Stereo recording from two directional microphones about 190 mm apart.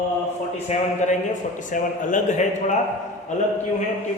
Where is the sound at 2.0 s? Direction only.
40° left (ahead or behind).